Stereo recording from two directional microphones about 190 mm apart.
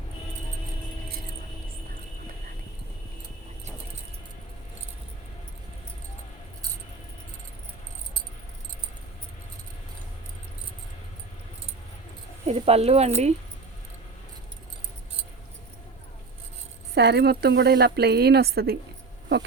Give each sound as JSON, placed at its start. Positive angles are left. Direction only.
{"t": 12.5, "sound": "speech", "side_deg": -30}
{"t": 16.9, "sound": "speech", "side_deg": -60}